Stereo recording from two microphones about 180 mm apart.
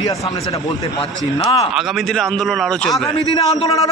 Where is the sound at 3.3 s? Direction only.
20° left (ahead or behind).